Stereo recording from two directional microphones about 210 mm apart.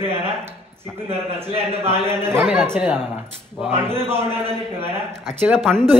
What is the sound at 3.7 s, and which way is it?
Speech, 10° right (ahead or behind).